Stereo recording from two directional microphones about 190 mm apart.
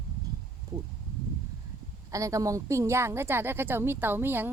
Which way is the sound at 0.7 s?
20° right (ahead or behind).